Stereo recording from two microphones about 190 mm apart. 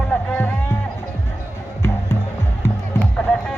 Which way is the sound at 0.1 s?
5° left (ahead or behind).